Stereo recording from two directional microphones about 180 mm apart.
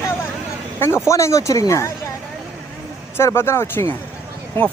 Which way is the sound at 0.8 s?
15° left (ahead or behind).